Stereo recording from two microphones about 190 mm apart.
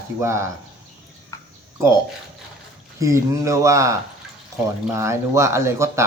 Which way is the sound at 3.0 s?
15° right (ahead or behind).